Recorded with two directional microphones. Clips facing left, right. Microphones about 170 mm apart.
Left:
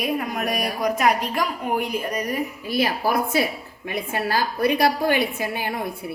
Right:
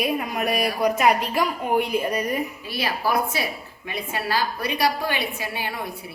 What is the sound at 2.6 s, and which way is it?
A woman's voice, 45° left (ahead or behind).